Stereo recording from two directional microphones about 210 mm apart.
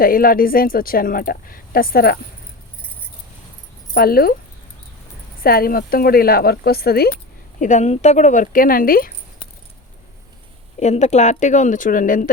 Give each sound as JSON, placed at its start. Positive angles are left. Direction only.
{"t": 0.0, "sound": "speech", "side_deg": 45}
{"t": 3.9, "sound": "speech", "side_deg": 45}
{"t": 5.4, "sound": "speech", "side_deg": 45}
{"t": 7.6, "sound": "speech", "side_deg": 35}
{"t": 10.8, "sound": "speech", "side_deg": 35}